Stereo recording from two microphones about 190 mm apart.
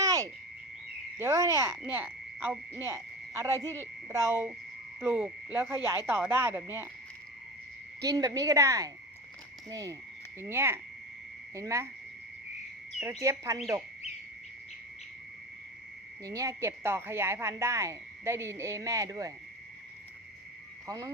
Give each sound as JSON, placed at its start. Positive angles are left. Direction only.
{"t": 0.0, "sound": "frog", "side_deg": -15}
{"t": 1.2, "sound": "speech", "side_deg": -15}
{"t": 8.0, "sound": "speech", "side_deg": -20}
{"t": 13.0, "sound": "speech", "side_deg": -15}
{"t": 16.2, "sound": "speech", "side_deg": -15}
{"t": 20.8, "sound": "frog", "side_deg": -15}